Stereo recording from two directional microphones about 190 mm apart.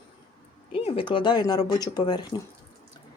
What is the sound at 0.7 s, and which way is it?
Speech, 25° left (ahead or behind).